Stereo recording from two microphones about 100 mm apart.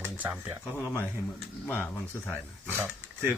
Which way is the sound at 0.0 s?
20° right (ahead or behind).